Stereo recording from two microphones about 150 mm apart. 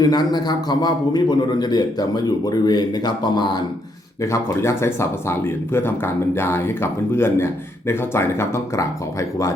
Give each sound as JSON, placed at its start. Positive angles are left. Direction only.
{"t": 0.0, "sound": "a man's voice", "side_deg": 30}
{"t": 4.2, "sound": "speech", "side_deg": 20}